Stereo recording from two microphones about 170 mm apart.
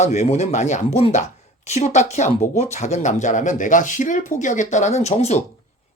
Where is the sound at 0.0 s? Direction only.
40° left (ahead or behind).